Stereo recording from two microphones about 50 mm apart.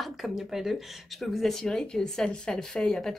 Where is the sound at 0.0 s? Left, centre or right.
Centre.